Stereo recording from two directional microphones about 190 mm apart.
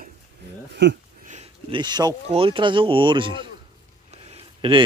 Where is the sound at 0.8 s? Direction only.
70° right (ahead or behind).